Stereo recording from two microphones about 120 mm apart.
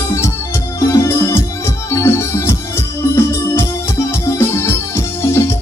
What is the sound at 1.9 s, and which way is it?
Organ, 20° left (ahead or behind).